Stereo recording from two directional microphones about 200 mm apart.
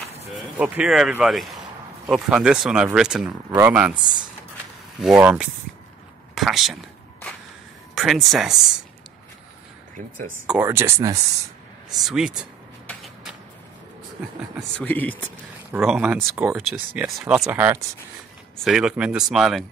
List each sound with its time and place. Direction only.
0.6 s speech: 5° right (ahead or behind)
5.0 s speech: 5° right (ahead or behind)
7.9 s speech: centre (ahead or behind)
9.9 s speech: 45° right (ahead or behind)
10.4 s speech: 10° right (ahead or behind)
11.9 s a sound: centre (ahead or behind)
14.8 s speech: 10° left (ahead or behind)
15.7 s speech: 5° right (ahead or behind)